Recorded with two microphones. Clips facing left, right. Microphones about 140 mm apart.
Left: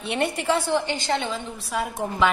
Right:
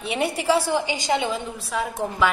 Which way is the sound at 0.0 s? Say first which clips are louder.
Right 1 dB; 5° right (ahead or behind).